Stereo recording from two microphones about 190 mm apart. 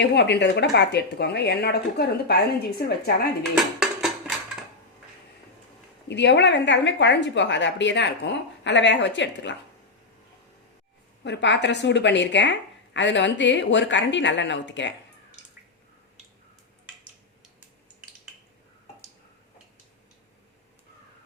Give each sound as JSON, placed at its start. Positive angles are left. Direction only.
{"t": 0.0, "sound": "a woman's voice", "side_deg": 60}
{"t": 6.1, "sound": "a woman's voice", "side_deg": 65}
{"t": 11.2, "sound": "a woman's voice", "side_deg": 70}